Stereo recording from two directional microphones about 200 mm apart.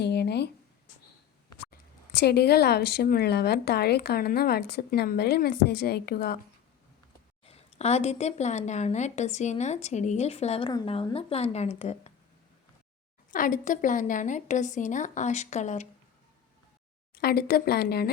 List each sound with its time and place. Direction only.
0.0 s a sound: 55° left (ahead or behind)
2.1 s a woman's voice: 55° left (ahead or behind)
7.4 s a woman's voice: 30° left (ahead or behind)
13.3 s a woman's voice: 40° left (ahead or behind)
17.2 s a woman's voice: 50° left (ahead or behind)